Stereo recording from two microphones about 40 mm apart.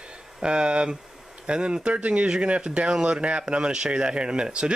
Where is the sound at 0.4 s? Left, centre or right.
Right.